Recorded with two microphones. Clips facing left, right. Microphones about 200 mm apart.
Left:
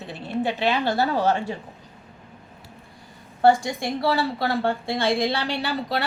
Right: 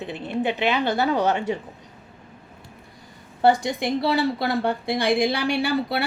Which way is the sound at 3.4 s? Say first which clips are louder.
Even; 20° right (ahead or behind).